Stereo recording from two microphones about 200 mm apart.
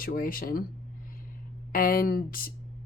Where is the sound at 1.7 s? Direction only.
45° left (ahead or behind).